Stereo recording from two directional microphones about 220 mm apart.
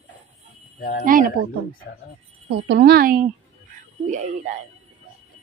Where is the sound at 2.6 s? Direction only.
50° right (ahead or behind).